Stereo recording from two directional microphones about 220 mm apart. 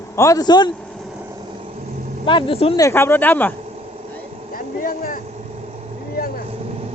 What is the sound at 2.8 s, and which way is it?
Speech, 10° left (ahead or behind).